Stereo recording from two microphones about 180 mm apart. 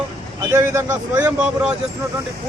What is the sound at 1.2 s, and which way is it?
Speech, 5° right (ahead or behind).